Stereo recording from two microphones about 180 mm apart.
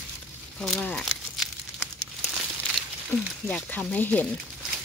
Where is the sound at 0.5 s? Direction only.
5° left (ahead or behind).